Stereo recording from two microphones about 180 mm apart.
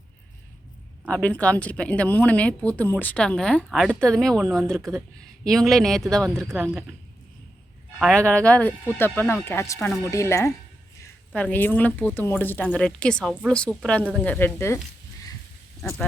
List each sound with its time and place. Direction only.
1.0 s speech: 10° left (ahead or behind)
7.9 s speech: centre (ahead or behind)
15.8 s speech: 5° left (ahead or behind)